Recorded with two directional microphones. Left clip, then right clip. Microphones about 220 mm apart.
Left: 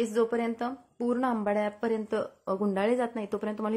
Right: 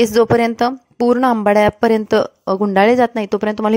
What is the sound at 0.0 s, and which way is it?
A woman's voice, 45° right (ahead or behind).